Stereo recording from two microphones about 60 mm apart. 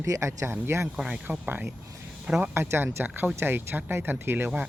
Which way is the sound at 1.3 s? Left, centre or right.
Right.